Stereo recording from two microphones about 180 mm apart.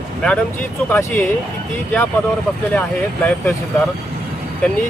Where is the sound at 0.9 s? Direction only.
10° left (ahead or behind).